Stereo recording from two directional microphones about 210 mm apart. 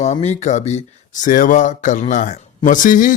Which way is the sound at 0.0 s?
30° left (ahead or behind).